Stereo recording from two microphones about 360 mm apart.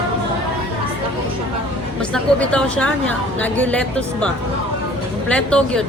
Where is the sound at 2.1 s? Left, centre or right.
Centre.